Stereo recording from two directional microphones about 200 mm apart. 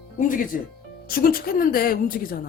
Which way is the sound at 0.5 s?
45° left (ahead or behind).